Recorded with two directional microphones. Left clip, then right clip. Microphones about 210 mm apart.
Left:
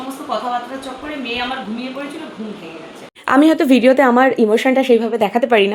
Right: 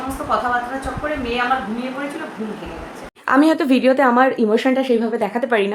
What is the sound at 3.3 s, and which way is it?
A woman's voice, 10° left (ahead or behind).